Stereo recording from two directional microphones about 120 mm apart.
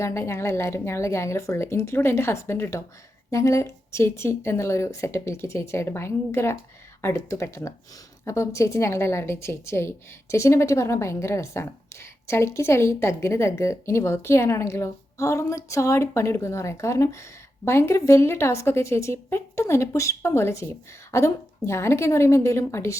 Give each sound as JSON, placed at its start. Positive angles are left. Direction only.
{"t": 0.0, "sound": "a woman's voice", "side_deg": 25}